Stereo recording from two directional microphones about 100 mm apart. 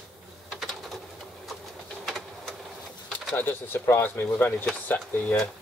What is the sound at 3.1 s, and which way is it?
Speech, 20° left (ahead or behind).